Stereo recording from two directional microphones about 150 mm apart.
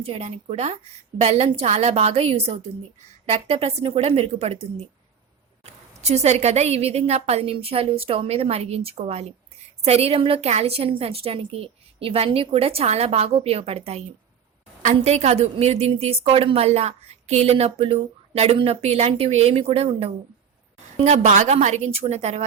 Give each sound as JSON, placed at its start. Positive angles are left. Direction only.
{"t": 0.0, "sound": "a woman's voice", "side_deg": -45}
{"t": 5.6, "sound": "a woman's voice", "side_deg": -45}